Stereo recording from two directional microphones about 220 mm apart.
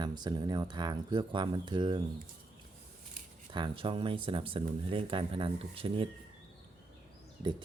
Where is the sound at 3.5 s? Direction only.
20° right (ahead or behind).